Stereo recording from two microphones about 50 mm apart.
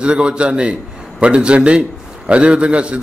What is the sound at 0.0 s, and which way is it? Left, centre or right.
A man's voice, centre.